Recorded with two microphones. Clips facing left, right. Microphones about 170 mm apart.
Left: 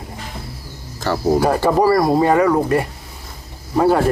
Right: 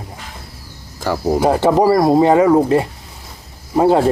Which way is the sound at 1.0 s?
10° right (ahead or behind).